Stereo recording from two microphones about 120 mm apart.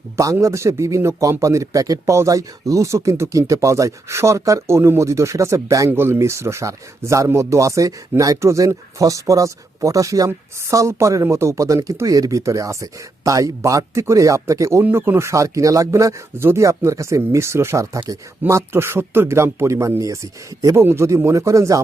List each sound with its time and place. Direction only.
0.3 s speech: 25° right (ahead or behind)